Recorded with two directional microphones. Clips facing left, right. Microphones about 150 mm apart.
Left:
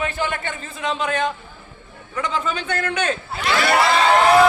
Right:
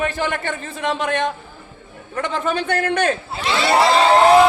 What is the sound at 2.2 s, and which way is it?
Speech, 60° right (ahead or behind).